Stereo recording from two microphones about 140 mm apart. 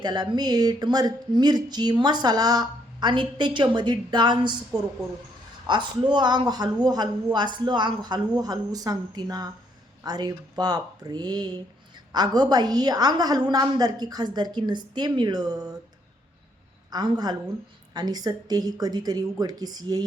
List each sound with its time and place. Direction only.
0.0 s speech: 30° right (ahead or behind)
16.9 s speech: 30° right (ahead or behind)